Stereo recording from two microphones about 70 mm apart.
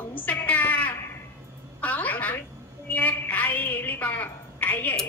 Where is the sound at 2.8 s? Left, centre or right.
Left.